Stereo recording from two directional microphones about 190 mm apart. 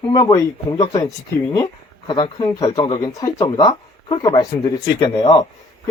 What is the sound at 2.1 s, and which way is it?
Speech, 25° left (ahead or behind).